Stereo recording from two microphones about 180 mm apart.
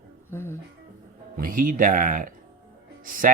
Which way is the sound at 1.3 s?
50° right (ahead or behind).